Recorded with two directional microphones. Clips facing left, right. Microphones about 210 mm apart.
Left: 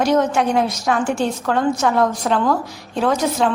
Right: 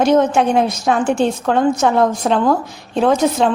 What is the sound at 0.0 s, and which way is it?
A woman's voice, 25° right (ahead or behind).